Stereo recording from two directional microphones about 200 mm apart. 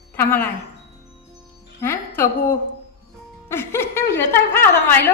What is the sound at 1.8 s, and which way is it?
A woman's voice, 10° left (ahead or behind).